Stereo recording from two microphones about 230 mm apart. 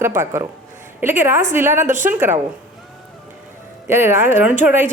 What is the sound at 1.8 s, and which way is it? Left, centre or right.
Speech, right.